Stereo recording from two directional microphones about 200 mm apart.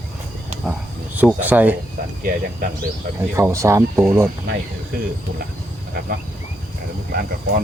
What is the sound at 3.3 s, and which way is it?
Speech, 15° right (ahead or behind).